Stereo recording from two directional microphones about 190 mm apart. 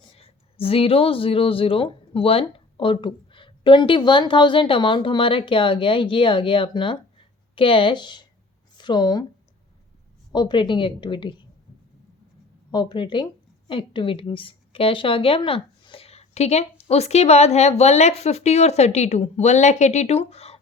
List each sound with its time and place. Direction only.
0.2 s speech: 30° left (ahead or behind)
10.3 s speech: 25° left (ahead or behind)
12.7 s a woman's voice: 25° left (ahead or behind)